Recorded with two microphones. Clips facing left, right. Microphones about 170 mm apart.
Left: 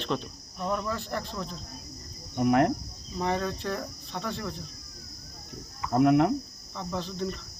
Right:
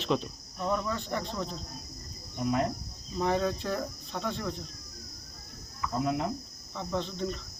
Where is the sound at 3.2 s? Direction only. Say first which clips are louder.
Right 1 dB; centre (ahead or behind).